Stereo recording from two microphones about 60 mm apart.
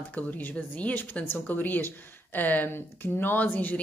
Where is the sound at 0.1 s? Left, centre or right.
Left.